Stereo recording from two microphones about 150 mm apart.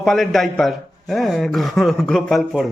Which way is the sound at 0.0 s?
Centre (ahead or behind).